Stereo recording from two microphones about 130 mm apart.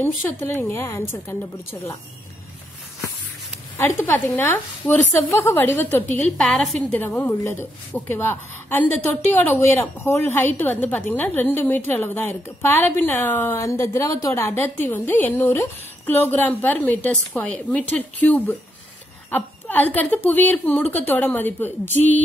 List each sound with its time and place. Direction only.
0.0 s a woman's voice: 15° left (ahead or behind)
3.7 s a woman's voice: 15° left (ahead or behind)
6.3 s a woman's voice: 5° left (ahead or behind)
7.1 s a woman's voice: 20° left (ahead or behind)